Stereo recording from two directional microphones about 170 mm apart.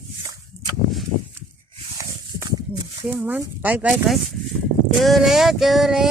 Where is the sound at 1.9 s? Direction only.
20° right (ahead or behind).